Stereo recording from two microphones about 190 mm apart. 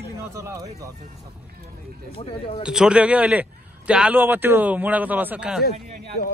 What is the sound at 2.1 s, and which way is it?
Speech, 30° left (ahead or behind).